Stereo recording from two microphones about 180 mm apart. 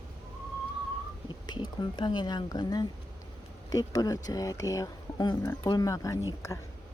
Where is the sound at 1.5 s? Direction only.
25° left (ahead or behind).